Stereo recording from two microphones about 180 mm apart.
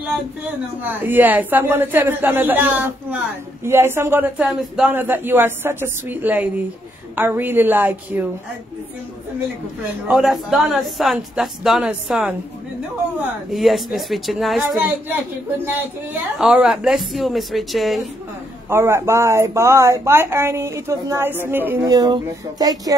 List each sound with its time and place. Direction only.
0.8 s a man's voice: 10° right (ahead or behind)
10.0 s a woman's voice: centre (ahead or behind)
13.5 s a woman's voice: centre (ahead or behind)
15.0 s a man's voice: 10° right (ahead or behind)
18.7 s a man's voice: 15° right (ahead or behind)